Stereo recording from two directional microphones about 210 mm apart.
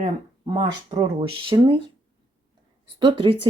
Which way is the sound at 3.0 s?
25° right (ahead or behind).